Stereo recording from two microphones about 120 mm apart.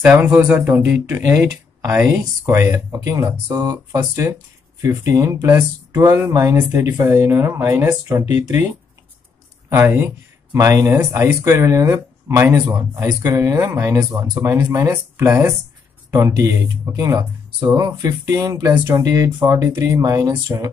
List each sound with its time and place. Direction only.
0.0 s speech: 15° right (ahead or behind); by 4.0 s 35° right (ahead or behind)
4.1 s speech: 25° right (ahead or behind)
9.7 s speech: 20° right (ahead or behind)